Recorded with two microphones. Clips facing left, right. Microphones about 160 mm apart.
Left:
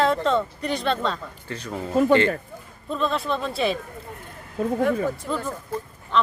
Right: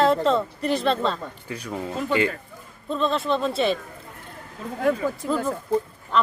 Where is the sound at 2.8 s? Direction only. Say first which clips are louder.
Right 2 dB; centre (ahead or behind).